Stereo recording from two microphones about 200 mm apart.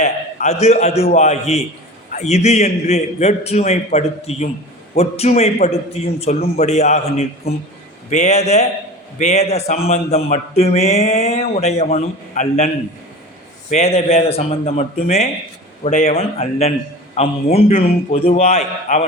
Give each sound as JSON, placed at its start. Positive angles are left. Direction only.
{"t": 0.0, "sound": "a man's voice", "side_deg": 35}